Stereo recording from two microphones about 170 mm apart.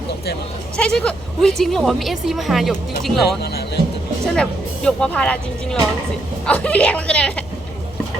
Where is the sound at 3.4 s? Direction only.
70° left (ahead or behind).